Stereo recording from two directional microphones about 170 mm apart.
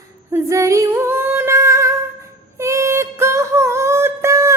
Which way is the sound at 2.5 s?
15° right (ahead or behind).